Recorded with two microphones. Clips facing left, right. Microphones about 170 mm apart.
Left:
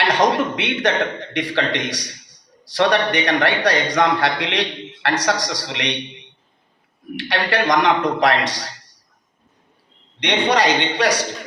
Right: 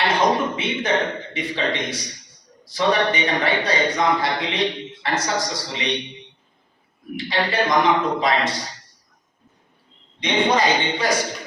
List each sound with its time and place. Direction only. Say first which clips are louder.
0.2 s a man's voice: left 2 dB; 80° left
7.2 s a man's voice: left 1 dB; 75° left (ahead or behind)
10.2 s a man's voice: left 1 dB; 75° left (ahead or behind)